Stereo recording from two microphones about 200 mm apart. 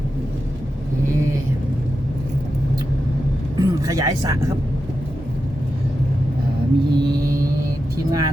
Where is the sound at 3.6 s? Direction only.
15° right (ahead or behind).